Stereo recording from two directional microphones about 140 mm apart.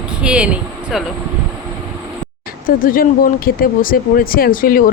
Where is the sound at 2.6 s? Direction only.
90° left.